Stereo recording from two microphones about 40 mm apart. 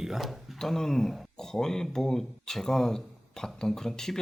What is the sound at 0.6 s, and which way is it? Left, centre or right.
Speech, centre.